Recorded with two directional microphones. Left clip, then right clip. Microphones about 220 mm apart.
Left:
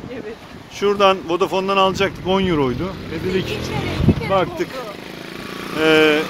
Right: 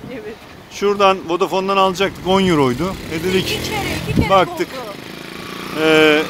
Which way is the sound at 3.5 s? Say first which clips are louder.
Right 3 dB; 40° right (ahead or behind).